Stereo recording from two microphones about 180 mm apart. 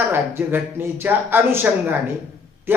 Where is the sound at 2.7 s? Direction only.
10° right (ahead or behind).